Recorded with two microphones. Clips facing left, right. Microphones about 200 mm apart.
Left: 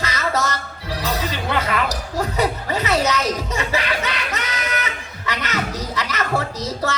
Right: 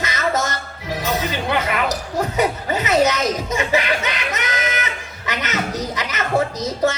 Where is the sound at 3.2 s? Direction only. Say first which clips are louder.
Right 2 dB; 35° left (ahead or behind).